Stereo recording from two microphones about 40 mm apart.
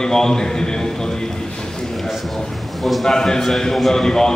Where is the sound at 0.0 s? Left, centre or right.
Centre.